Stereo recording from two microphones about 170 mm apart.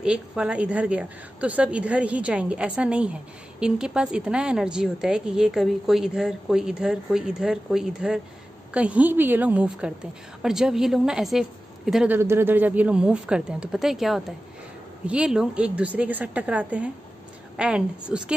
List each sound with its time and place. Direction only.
0.0 s a woman's voice: 5° right (ahead or behind)
12.2 s a woman's voice: 15° right (ahead or behind)